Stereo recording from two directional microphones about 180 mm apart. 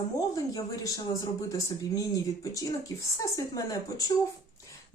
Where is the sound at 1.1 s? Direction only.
20° left (ahead or behind).